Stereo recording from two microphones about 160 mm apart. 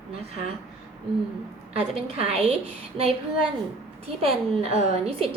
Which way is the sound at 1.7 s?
40° right (ahead or behind).